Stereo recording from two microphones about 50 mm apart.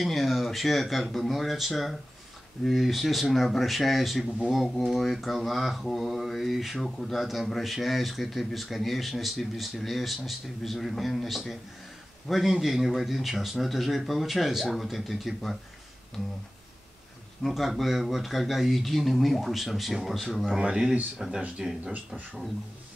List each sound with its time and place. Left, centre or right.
0.0 s speech: centre
17.4 s speech: centre
20.5 s speech: centre